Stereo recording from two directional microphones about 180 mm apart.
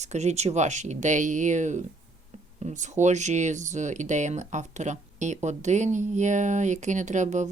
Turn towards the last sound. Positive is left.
turn(degrees=-40)  # may be behind; listen again after turning